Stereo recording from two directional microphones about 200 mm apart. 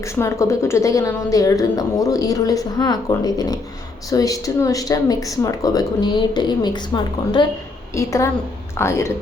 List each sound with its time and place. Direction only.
0.0 s a woman's voice: 15° left (ahead or behind)